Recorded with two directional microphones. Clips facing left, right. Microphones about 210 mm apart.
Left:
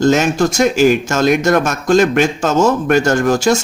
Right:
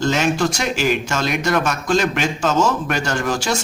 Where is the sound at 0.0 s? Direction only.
45° left (ahead or behind).